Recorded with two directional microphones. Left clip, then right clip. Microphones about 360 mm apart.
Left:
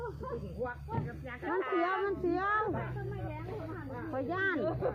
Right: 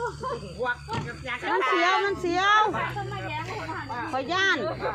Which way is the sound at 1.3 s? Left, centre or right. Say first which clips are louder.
Right 10 dB; centre.